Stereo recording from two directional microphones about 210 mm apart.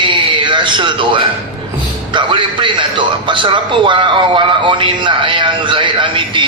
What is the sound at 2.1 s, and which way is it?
A man's voice, 25° right (ahead or behind).